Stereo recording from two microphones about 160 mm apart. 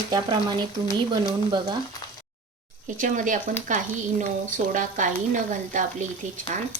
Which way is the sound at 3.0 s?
55° right (ahead or behind).